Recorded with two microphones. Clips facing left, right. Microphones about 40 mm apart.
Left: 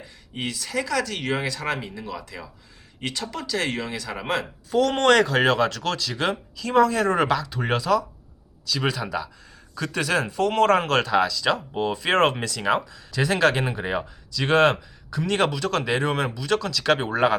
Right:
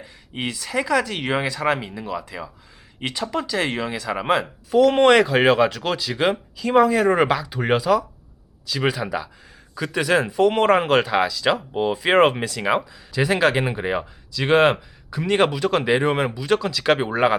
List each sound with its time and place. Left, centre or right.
0.0 s speech: centre